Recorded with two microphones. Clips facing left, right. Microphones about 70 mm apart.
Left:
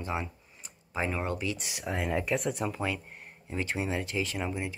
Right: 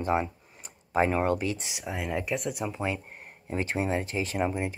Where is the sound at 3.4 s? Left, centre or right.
Right.